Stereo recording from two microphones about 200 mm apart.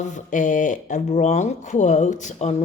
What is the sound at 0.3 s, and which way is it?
A woman's voice, 40° left (ahead or behind).